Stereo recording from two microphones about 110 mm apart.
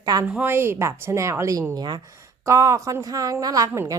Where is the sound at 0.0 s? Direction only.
35° right (ahead or behind).